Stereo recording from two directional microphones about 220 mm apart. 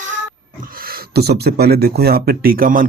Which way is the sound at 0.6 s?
40° right (ahead or behind).